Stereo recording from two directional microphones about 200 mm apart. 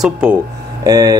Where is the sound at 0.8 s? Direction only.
20° right (ahead or behind).